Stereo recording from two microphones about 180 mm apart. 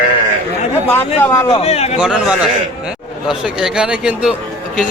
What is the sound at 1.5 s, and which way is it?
Speech, 35° left (ahead or behind).